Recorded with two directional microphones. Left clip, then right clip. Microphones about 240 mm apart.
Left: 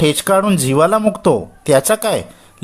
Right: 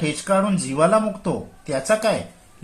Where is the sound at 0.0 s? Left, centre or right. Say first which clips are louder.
Left 7 dB; left.